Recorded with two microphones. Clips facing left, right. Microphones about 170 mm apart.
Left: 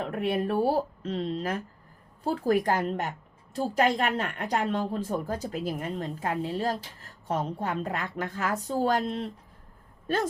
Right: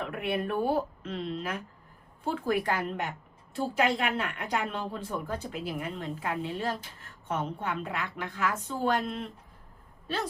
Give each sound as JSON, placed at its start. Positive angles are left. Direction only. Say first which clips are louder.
{"t": 0.0, "sound": "a woman's voice", "louder": "left 3 dB", "side_deg": 40}